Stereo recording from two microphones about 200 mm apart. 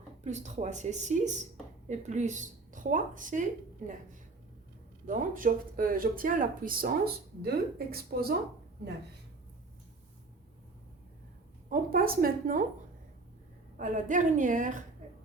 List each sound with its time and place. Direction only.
0.3 s speech: 35° right (ahead or behind)
5.0 s speech: 40° right (ahead or behind)
11.7 s speech: 45° right (ahead or behind)
13.7 s speech: 40° right (ahead or behind)